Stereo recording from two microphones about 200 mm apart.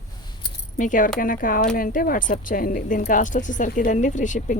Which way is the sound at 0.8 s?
40° left (ahead or behind).